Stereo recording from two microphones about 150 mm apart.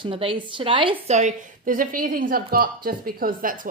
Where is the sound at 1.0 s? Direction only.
50° right (ahead or behind).